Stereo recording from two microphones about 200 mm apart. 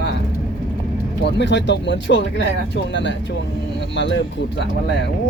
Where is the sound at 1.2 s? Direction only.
60° left (ahead or behind).